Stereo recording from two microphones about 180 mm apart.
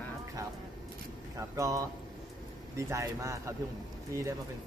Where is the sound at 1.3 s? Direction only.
15° right (ahead or behind).